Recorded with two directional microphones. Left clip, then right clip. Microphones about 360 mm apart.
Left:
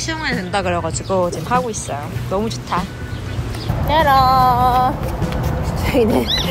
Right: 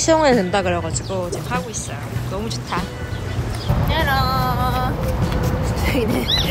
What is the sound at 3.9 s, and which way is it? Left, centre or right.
Speech, left.